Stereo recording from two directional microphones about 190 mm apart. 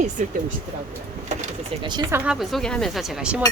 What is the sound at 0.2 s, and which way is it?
Speech, 40° right (ahead or behind).